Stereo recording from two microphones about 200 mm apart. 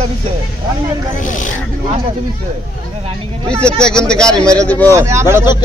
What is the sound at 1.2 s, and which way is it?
Speech, 40° left (ahead or behind).